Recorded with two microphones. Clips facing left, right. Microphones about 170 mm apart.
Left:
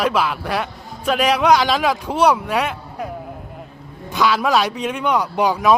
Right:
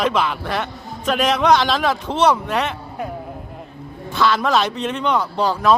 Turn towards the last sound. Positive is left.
turn(degrees=15)  # may be behind; listen again after turning